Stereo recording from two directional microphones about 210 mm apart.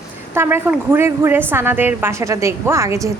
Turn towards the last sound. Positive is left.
turn(degrees=-15)  # may be behind; listen again after turning